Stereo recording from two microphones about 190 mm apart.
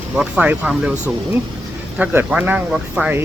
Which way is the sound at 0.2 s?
5° right (ahead or behind).